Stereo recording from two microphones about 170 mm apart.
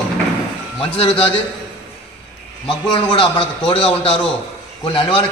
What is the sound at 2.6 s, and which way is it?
A man's voice, 30° left (ahead or behind).